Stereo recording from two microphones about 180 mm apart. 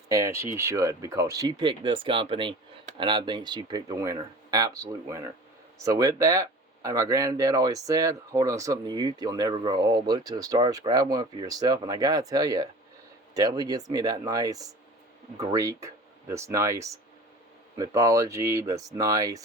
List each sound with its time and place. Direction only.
0.1 s speech: 15° right (ahead or behind)